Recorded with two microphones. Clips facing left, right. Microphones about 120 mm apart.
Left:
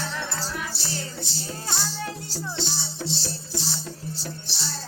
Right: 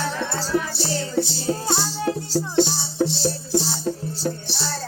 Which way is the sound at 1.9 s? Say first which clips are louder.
Right 10 dB; 35° right (ahead or behind).